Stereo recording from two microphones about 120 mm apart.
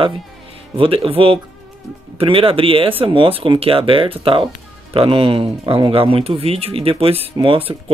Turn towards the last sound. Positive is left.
turn(degrees=-45)  # may be behind; listen again after turning